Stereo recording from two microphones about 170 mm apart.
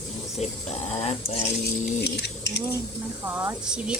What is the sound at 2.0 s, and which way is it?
Speech, 75° left (ahead or behind).